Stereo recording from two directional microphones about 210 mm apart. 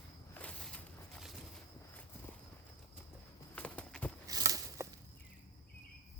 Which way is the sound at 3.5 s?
5° left (ahead or behind).